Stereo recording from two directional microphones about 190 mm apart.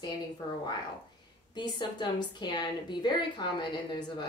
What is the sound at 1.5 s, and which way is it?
Speech, 25° left (ahead or behind).